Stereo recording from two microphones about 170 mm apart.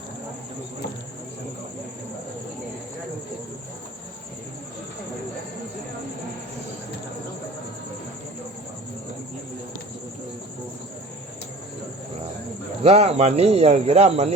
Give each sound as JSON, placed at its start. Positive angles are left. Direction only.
{"t": 12.8, "sound": "speech", "side_deg": -35}